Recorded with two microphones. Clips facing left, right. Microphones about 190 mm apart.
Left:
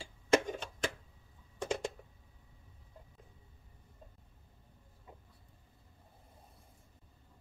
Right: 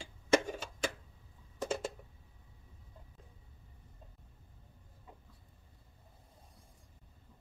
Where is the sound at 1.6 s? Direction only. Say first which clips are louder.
Even; 5° right (ahead or behind).